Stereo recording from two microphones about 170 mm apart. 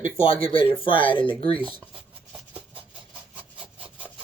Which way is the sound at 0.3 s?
30° left (ahead or behind).